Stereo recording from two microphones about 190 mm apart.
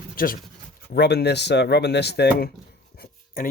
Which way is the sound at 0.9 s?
60° left (ahead or behind).